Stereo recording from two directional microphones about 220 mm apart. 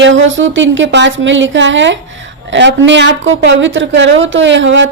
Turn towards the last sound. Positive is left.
turn(degrees=-55)  # may be behind; listen again after turning